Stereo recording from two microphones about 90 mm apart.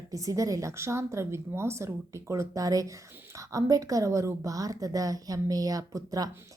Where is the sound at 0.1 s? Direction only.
40° right (ahead or behind).